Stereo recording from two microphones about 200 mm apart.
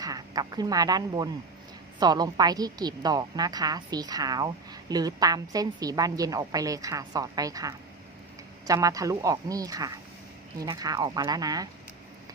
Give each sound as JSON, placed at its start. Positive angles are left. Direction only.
{"t": 0.0, "sound": "a woman's voice", "side_deg": -20}